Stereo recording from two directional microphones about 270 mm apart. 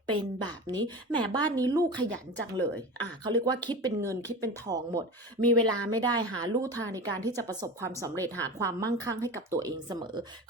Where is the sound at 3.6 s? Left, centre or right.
Centre.